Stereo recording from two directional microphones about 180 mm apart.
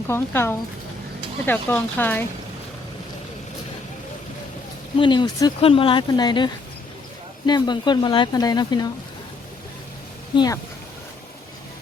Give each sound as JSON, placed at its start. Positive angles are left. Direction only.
{"t": 0.1, "sound": "speech", "side_deg": 15}
{"t": 4.9, "sound": "speech", "side_deg": 25}
{"t": 10.3, "sound": "speech", "side_deg": 20}